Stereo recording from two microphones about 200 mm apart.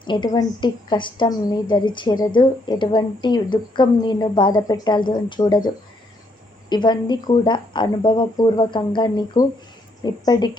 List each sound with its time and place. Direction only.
0.0 s a woman's voice: 25° left (ahead or behind)